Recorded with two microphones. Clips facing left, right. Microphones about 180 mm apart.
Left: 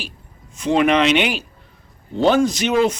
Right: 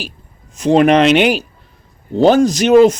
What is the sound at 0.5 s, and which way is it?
Speech, 40° right (ahead or behind).